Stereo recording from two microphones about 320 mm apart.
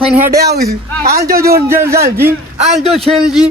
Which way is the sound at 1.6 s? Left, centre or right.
Centre.